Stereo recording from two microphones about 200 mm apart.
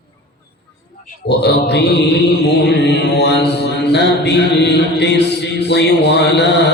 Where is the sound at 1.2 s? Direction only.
55° left (ahead or behind).